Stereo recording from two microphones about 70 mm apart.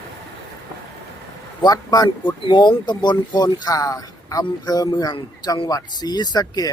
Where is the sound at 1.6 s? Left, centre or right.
Left.